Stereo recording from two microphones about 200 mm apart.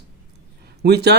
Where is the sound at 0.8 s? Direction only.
55° right (ahead or behind).